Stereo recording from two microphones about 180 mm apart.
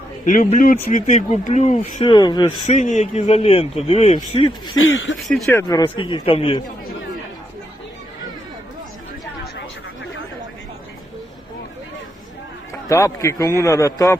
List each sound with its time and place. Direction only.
0.3 s speech: 45° left (ahead or behind)
2.1 s a man's voice: 20° left (ahead or behind)
2.6 s speech: 40° left (ahead or behind)
4.8 s speech: 90° left
5.3 s a man's voice: 15° left (ahead or behind); by 6.6 s 30° left (ahead or behind)
9.6 s a sound: 80° left
12.9 s a man's voice: 15° left (ahead or behind)